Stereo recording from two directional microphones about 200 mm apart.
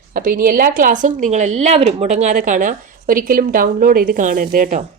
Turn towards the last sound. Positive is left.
turn(degrees=-40)  # may be behind; listen again after turning